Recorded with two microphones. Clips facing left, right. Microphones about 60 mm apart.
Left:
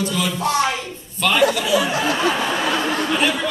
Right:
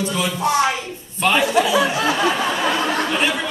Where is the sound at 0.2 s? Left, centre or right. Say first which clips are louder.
Right 2 dB; centre.